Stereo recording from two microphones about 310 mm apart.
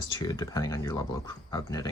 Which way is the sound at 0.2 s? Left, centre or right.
Centre.